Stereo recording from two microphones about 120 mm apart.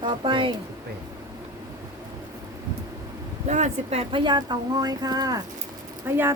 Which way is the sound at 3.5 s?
75° right (ahead or behind).